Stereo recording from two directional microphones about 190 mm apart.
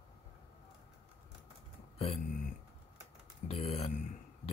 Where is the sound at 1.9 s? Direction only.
30° left (ahead or behind).